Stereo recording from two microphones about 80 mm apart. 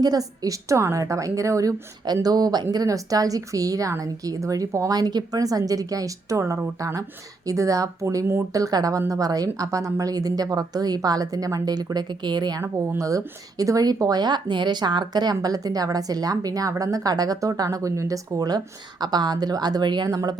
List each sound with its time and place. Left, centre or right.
0.0 s speech: right
2.2 s speech: right
12.6 s speech: right